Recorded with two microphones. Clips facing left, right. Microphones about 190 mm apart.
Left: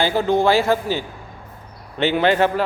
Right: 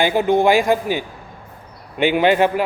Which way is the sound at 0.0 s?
15° right (ahead or behind).